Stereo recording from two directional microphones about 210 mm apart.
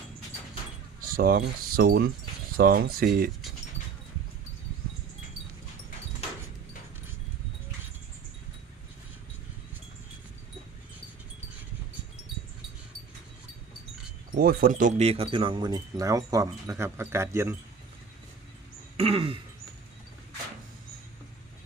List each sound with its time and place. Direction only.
1.0 s a sound: 45° right (ahead or behind)
2.6 s speech: 45° right (ahead or behind)
14.3 s speech: 45° right (ahead or behind); by 17.6 s 10° right (ahead or behind)
18.9 s speech: 25° right (ahead or behind)